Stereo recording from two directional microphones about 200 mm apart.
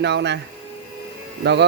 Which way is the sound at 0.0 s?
60° right (ahead or behind).